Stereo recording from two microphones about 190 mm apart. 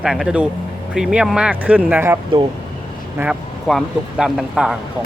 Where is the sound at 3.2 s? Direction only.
Centre (ahead or behind).